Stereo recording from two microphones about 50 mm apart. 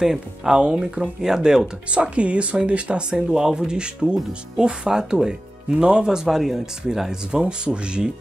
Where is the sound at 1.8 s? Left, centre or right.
Right.